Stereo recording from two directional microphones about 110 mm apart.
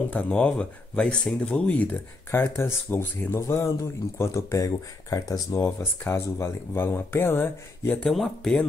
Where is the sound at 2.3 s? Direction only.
20° left (ahead or behind).